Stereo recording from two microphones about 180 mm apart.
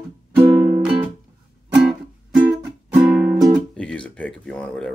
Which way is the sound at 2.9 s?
5° right (ahead or behind).